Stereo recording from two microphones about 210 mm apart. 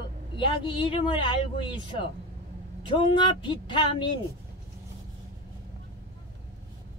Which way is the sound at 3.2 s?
20° left (ahead or behind).